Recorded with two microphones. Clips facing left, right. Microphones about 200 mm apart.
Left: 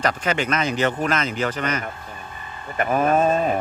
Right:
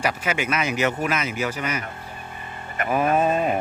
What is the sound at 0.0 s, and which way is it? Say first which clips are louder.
Speech: left 2 dB; 10° right (ahead or behind).